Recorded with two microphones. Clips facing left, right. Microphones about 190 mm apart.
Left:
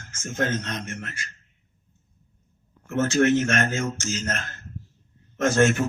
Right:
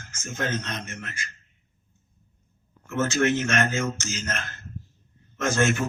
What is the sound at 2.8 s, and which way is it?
Speech, 50° left (ahead or behind).